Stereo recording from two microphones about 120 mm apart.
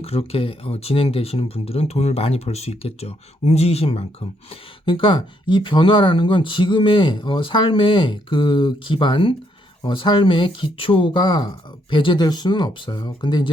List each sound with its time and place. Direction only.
0.0 s speech: 55° left (ahead or behind)